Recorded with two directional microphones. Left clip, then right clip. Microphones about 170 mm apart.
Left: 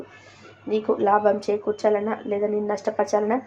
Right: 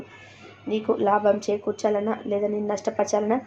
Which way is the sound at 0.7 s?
20° left (ahead or behind).